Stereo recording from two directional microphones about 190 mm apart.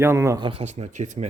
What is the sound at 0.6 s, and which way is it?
Speech, 40° right (ahead or behind).